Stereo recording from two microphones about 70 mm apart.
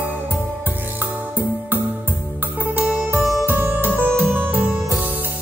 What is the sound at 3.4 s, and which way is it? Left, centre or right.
Music, right.